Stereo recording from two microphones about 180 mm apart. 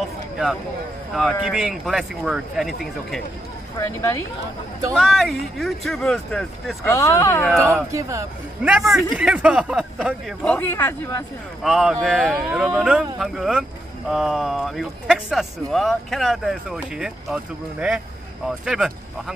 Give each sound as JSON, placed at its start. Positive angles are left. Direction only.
{"t": 0.0, "sound": "a sound", "side_deg": 0}
{"t": 1.1, "sound": "speech", "side_deg": 0}
{"t": 3.7, "sound": "a man's voice", "side_deg": 15}
{"t": 4.9, "sound": "speech", "side_deg": 0}
{"t": 6.8, "sound": "a man's voice", "side_deg": 15}
{"t": 7.6, "sound": "a man's voice", "side_deg": -15}
{"t": 9.1, "sound": "speech", "side_deg": -5}
{"t": 10.4, "sound": "a man's voice", "side_deg": 10}
{"t": 11.6, "sound": "speech", "side_deg": 0}